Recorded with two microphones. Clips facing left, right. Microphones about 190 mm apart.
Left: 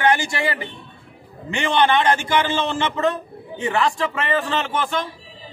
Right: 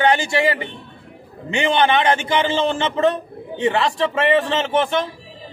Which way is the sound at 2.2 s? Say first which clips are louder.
Right 2 dB; 20° right (ahead or behind).